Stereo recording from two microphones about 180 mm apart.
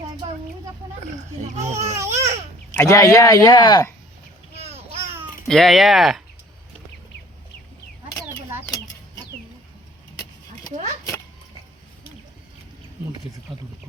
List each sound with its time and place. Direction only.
1.7 s a sound: 15° right (ahead or behind)
2.7 s speech: 15° left (ahead or behind)
4.5 s boat: 35° right (ahead or behind)
5.5 s speech: centre (ahead or behind)